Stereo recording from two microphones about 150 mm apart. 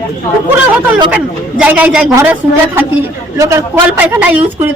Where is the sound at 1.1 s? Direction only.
10° right (ahead or behind).